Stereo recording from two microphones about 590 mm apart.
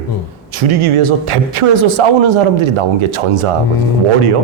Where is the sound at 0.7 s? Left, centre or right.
Right.